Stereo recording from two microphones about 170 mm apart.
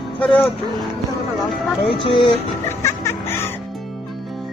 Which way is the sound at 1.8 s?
30° left (ahead or behind).